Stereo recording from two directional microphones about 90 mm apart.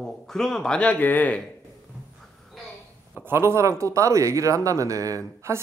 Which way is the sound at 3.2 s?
25° right (ahead or behind).